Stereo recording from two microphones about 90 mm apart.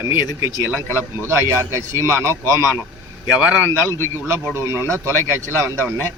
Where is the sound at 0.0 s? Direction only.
25° right (ahead or behind).